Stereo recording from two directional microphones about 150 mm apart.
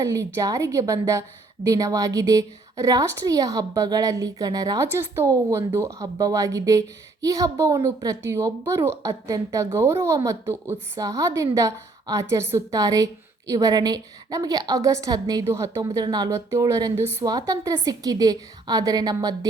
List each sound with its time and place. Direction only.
0.0 s a woman's voice: 20° right (ahead or behind)